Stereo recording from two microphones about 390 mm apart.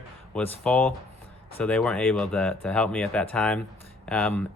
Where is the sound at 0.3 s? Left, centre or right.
Centre.